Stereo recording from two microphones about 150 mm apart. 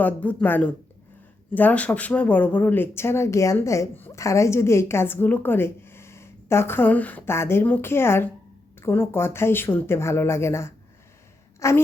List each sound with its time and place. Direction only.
0.0 s a woman's voice: 10° left (ahead or behind)